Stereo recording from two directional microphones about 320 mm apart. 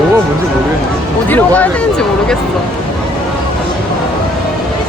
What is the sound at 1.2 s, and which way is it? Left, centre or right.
Speech, centre.